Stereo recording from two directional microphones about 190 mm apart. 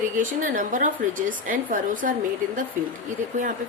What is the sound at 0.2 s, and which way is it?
A woman's voice, 45° right (ahead or behind).